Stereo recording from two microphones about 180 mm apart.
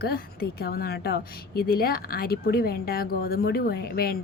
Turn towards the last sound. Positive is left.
turn(degrees=60)  # may be behind; listen again after turning